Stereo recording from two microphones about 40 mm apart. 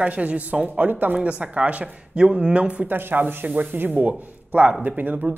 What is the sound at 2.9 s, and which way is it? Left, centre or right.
Speech, right.